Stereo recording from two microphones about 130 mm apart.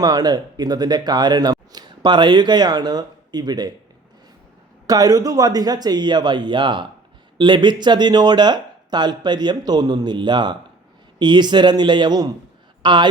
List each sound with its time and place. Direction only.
0.0 s speech: 30° right (ahead or behind)
4.9 s speech: 30° right (ahead or behind)